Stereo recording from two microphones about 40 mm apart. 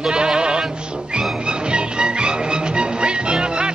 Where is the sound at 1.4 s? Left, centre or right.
Right.